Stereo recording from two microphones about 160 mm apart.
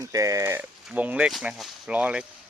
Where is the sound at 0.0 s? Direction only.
20° right (ahead or behind).